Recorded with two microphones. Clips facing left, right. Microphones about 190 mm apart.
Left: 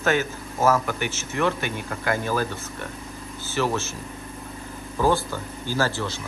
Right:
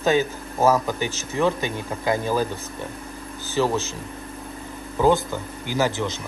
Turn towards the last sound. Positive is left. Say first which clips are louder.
# right 2 dB
turn(degrees=-20)  # may be behind; listen again after turning